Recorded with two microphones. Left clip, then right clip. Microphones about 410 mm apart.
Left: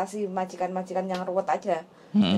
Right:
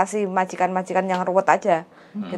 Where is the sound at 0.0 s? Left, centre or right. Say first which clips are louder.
Right 8 dB; right.